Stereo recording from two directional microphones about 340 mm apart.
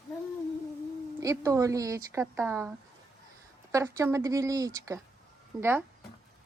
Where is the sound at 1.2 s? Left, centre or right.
Centre.